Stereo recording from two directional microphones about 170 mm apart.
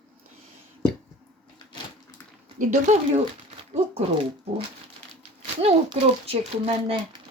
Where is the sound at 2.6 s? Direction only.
50° right (ahead or behind).